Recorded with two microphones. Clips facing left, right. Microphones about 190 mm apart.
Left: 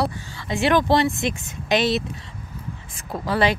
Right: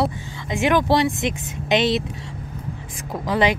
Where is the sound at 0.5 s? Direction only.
10° right (ahead or behind).